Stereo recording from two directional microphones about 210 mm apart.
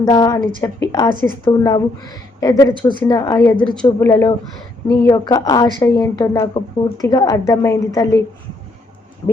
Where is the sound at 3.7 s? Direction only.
5° left (ahead or behind).